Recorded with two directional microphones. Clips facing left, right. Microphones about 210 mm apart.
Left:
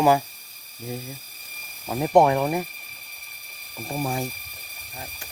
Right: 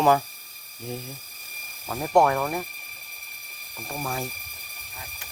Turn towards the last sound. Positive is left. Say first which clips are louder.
# left 4 dB
turn(degrees=20)  # may be behind; listen again after turning